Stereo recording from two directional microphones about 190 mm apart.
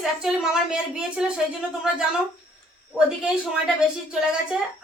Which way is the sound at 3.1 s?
5° right (ahead or behind).